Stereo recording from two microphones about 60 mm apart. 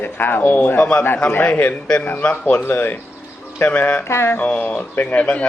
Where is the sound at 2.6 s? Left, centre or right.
Left.